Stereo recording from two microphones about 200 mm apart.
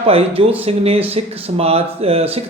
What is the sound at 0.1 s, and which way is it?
Speech, 30° right (ahead or behind).